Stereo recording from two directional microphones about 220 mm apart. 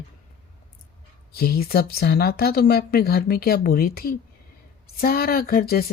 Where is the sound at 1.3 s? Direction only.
45° left (ahead or behind).